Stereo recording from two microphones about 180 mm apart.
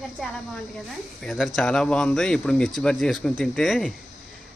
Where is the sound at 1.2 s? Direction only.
Centre (ahead or behind).